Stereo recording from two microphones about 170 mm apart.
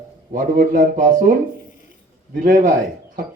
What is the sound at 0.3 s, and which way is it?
A woman's voice, 55° right (ahead or behind).